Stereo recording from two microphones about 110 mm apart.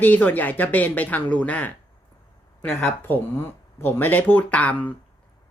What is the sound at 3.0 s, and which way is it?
Speech, 20° left (ahead or behind).